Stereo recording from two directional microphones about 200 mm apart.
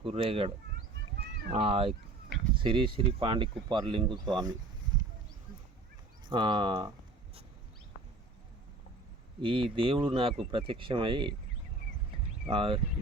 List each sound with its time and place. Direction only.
0.0 s speech: 25° right (ahead or behind)
1.5 s speech: 25° right (ahead or behind)
6.2 s speech: 25° right (ahead or behind)
9.4 s speech: 25° right (ahead or behind)
12.5 s speech: 25° right (ahead or behind)